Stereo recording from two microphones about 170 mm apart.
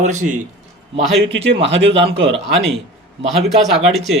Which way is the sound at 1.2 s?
90° right.